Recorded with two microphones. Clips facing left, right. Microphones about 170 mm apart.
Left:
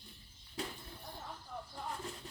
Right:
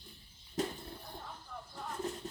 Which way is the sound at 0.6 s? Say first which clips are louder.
Right 7 dB; 45° right (ahead or behind).